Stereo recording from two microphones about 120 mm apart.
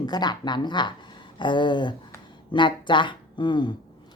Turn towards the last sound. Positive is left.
turn(degrees=40)  # may be behind; listen again after turning